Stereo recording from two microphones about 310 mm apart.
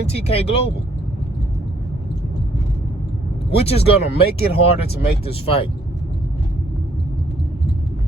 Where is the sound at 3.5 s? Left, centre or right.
Centre.